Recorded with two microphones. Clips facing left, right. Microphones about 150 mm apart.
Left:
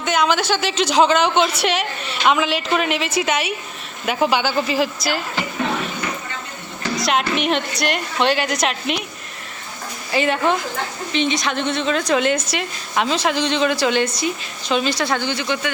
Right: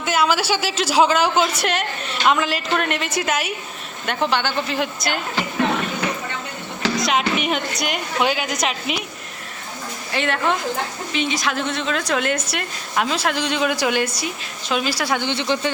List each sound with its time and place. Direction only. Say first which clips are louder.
0.0 s a woman's voice: left 1 dB; 5° right (ahead or behind)
7.0 s a woman's voice: left 3 dB; centre (ahead or behind)
10.1 s a woman's voice: left 3 dB; centre (ahead or behind)
15.3 s speech: right 1 dB; 30° right (ahead or behind)